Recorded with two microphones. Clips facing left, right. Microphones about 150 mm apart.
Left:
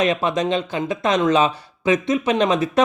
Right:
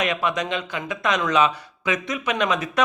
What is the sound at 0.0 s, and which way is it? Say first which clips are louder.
Speech: left 5 dB; 30° left (ahead or behind).